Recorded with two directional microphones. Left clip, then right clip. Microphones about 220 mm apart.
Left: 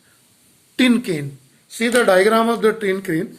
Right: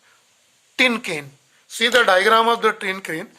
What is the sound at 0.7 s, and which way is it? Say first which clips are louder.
Speech: even; 40° right (ahead or behind).